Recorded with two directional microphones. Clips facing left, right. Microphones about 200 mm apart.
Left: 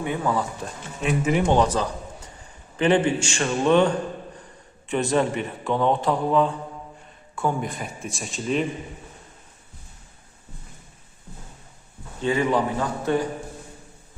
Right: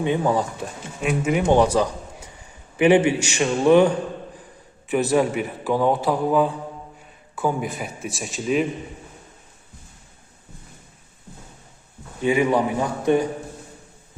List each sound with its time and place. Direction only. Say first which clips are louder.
0.0 s speech: right 4 dB; 20° right (ahead or behind)
1.0 s a man's voice: right 1 dB; centre (ahead or behind)
5.1 s a man's voice: right 1 dB; 10° right (ahead or behind)
12.2 s a man's voice: right 3 dB; 10° right (ahead or behind)